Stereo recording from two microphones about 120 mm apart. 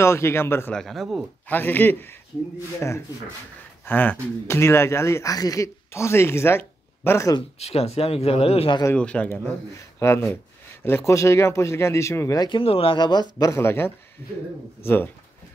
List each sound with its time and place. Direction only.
0.0 s speech: 20° left (ahead or behind)
0.7 s speech: centre (ahead or behind)
1.5 s speech: 15° left (ahead or behind)
7.5 s speech: 60° left (ahead or behind)
8.9 s speech: 10° left (ahead or behind)
9.8 s a sound: 20° left (ahead or behind)
11.1 s speech: 25° left (ahead or behind)
12.4 s speech: 50° left (ahead or behind); by 13.9 s 20° left (ahead or behind)